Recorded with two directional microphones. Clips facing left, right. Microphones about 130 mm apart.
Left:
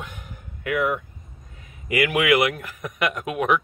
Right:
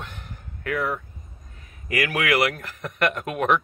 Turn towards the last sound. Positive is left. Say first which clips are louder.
# even
turn(degrees=5)  # may be behind; listen again after turning